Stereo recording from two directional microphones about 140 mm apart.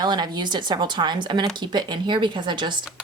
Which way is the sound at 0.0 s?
30° right (ahead or behind).